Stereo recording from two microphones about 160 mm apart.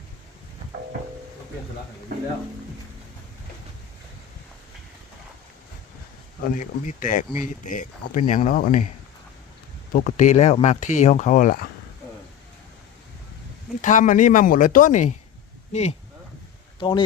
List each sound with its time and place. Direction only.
6.4 s speech: 60° left (ahead or behind)
9.9 s speech: 50° left (ahead or behind)
13.8 s speech: 55° left (ahead or behind)
16.8 s speech: 35° left (ahead or behind)